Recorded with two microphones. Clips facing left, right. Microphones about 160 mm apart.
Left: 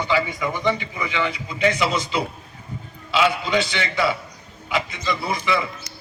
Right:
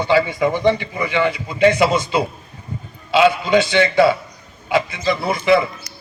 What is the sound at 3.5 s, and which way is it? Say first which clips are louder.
A man's voice: right 8 dB; 50° right (ahead or behind).